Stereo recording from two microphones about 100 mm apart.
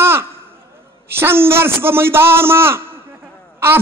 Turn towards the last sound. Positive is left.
turn(degrees=-25)  # may be behind; listen again after turning